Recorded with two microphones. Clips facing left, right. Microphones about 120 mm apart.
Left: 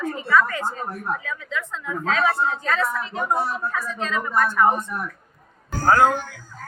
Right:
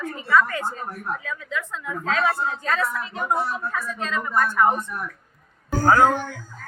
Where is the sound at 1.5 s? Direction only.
5° right (ahead or behind).